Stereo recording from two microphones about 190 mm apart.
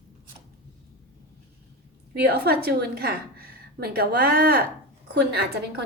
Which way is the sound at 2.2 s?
55° right (ahead or behind).